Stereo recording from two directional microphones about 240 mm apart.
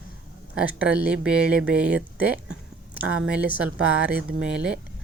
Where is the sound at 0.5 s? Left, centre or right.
Centre.